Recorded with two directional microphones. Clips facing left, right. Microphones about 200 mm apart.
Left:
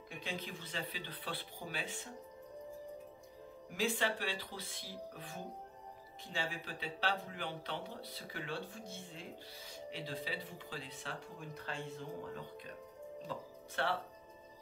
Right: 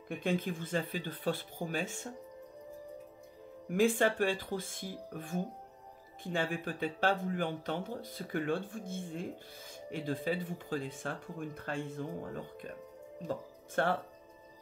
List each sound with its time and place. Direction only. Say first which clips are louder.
0.2 s speech: right 10 dB; 50° right (ahead or behind)
3.6 s speech: right 8 dB; 50° right (ahead or behind)